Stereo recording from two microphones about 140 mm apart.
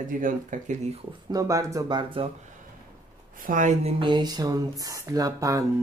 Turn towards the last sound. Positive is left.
turn(degrees=-25)  # may be behind; listen again after turning